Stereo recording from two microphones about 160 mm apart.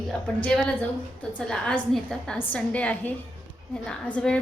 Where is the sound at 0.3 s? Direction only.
5° left (ahead or behind).